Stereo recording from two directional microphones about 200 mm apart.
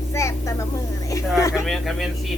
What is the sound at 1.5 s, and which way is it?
Bird, centre (ahead or behind).